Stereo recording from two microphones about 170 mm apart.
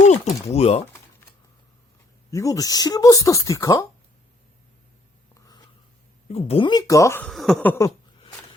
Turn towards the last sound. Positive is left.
turn(degrees=15)  # may be behind; listen again after turning